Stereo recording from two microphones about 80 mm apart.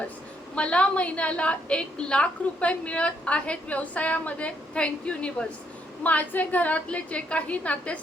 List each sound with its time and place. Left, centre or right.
0.5 s a woman's voice: centre